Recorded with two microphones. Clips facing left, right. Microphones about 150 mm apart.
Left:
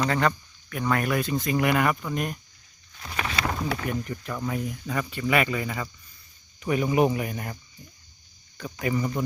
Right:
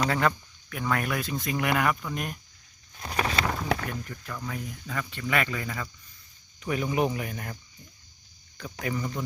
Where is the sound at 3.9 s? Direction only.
15° left (ahead or behind).